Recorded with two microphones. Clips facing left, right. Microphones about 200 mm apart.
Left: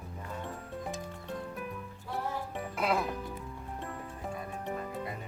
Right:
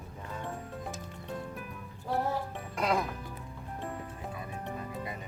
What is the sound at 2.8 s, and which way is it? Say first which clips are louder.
Speech: right 1 dB; 5° left (ahead or behind).